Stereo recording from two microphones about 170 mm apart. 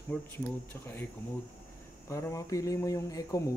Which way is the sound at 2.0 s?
20° left (ahead or behind).